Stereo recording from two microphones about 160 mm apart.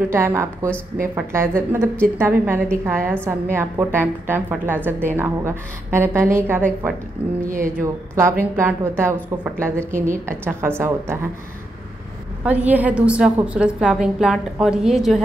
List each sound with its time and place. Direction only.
0.1 s a woman's voice: 15° right (ahead or behind)
12.4 s a woman's voice: 10° right (ahead or behind)